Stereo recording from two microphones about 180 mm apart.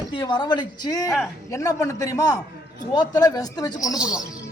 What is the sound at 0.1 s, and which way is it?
Speech, 25° left (ahead or behind).